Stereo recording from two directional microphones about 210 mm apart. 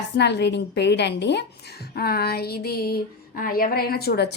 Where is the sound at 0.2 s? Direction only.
55° left (ahead or behind).